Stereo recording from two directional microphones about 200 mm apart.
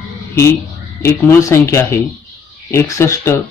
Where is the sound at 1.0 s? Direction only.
15° left (ahead or behind).